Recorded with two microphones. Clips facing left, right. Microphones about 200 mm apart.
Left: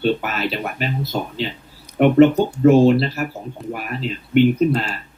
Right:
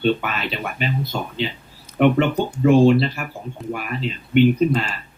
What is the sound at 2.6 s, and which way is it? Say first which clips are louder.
Speech: left 1 dB; 5° left (ahead or behind).